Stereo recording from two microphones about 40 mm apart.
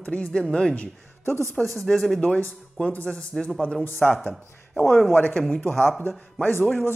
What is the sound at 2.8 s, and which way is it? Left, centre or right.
Speech, left.